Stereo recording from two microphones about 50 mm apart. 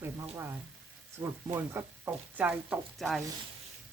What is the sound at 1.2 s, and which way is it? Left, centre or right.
Sizzle, right.